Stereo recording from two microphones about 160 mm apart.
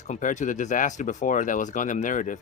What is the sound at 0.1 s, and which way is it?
Speech, 50° left (ahead or behind).